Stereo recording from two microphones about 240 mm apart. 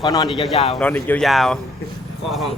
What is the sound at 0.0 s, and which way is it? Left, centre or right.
Speech, centre.